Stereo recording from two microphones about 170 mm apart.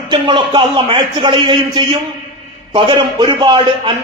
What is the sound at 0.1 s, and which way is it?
A man's voice, 30° right (ahead or behind).